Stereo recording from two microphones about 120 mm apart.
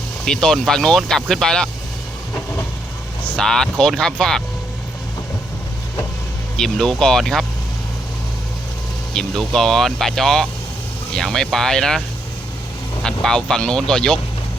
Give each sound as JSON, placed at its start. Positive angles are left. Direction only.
{"t": 0.3, "sound": "speech", "side_deg": 5}
{"t": 3.2, "sound": "speech", "side_deg": 5}
{"t": 6.6, "sound": "speech", "side_deg": 5}
{"t": 9.1, "sound": "speech", "side_deg": 5}
{"t": 13.2, "sound": "speech", "side_deg": 5}